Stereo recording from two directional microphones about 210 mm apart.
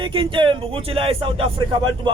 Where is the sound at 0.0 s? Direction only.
25° right (ahead or behind).